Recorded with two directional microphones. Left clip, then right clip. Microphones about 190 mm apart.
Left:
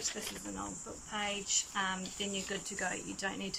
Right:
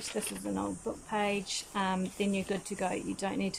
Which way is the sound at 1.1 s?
25° right (ahead or behind).